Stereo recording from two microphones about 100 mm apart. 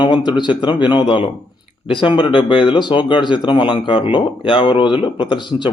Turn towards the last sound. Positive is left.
turn(degrees=50)  # may be behind; listen again after turning